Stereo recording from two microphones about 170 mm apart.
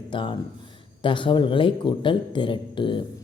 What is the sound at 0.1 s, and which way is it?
A man's voice, 30° left (ahead or behind).